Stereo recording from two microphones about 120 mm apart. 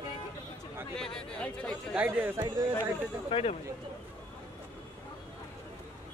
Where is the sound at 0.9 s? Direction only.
5° left (ahead or behind).